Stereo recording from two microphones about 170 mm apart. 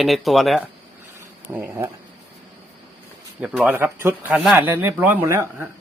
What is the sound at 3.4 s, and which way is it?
Speech, 5° right (ahead or behind).